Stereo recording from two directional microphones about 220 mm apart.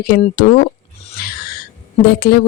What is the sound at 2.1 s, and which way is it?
Speech, 45° left (ahead or behind).